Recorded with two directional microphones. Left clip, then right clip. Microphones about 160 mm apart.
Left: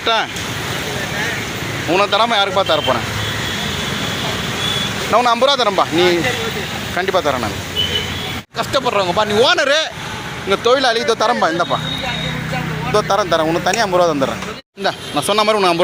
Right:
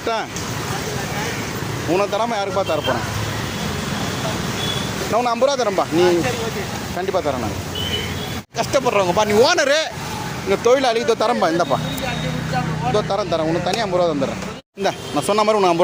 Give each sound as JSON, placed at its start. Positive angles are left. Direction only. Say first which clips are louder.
{"t": 0.0, "sound": "speech", "louder": "left 6 dB", "side_deg": -15}
{"t": 1.9, "sound": "speech", "louder": "left 5 dB", "side_deg": -5}
{"t": 5.1, "sound": "speech", "louder": "left 5 dB", "side_deg": -5}
{"t": 8.5, "sound": "speech", "louder": "left 1 dB", "side_deg": -20}
{"t": 13.3, "sound": "speech", "louder": "left 4 dB", "side_deg": 35}
{"t": 13.7, "sound": "speech", "louder": "left 5 dB", "side_deg": 10}
{"t": 15.1, "sound": "speech", "louder": "left 2 dB", "side_deg": -15}